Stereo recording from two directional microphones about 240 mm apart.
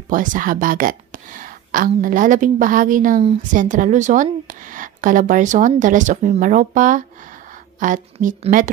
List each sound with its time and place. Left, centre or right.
0.1 s speech: right